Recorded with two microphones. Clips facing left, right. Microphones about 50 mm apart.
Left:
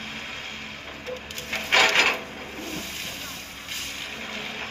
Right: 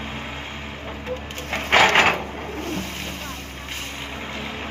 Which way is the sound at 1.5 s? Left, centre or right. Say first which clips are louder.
Right 4 dB; right.